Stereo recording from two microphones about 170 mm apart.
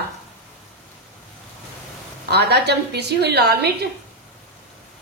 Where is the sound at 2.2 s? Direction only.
75° right (ahead or behind).